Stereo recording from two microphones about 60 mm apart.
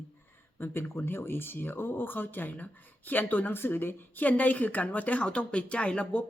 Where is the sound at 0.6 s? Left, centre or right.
Left.